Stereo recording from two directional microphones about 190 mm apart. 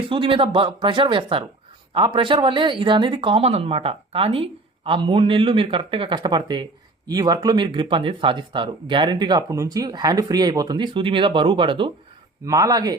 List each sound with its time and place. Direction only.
0.1 s speech: 25° right (ahead or behind)